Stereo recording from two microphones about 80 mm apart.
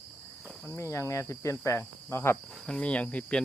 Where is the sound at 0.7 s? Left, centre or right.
Left.